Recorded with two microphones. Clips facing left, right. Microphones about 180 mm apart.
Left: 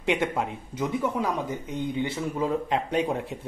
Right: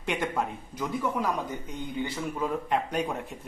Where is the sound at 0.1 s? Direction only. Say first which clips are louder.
Left 3 dB; 25° left (ahead or behind).